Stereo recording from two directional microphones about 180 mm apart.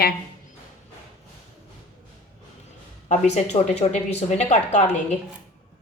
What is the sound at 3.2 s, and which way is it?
Speech, 40° left (ahead or behind).